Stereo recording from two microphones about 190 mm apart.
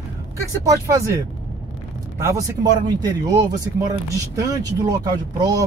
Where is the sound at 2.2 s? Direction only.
15° right (ahead or behind).